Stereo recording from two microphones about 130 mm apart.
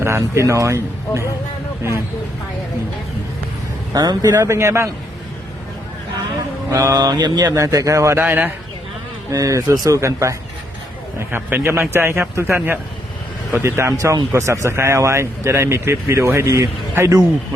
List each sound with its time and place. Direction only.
0.0 s speech: 20° right (ahead or behind)
3.9 s speech: 30° right (ahead or behind)
6.7 s speech: 25° right (ahead or behind)
9.3 s a man's voice: 25° right (ahead or behind)